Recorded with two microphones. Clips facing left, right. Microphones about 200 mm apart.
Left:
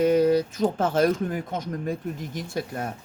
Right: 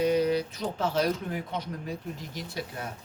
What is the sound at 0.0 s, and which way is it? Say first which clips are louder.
Speech: left 5 dB; 50° left (ahead or behind).